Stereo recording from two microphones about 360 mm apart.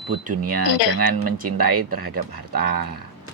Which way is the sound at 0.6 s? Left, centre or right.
Left.